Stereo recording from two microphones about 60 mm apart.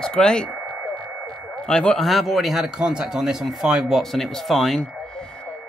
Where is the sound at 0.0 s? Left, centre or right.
Centre.